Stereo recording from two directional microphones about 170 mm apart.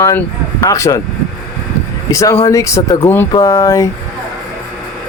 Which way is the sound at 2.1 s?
20° left (ahead or behind).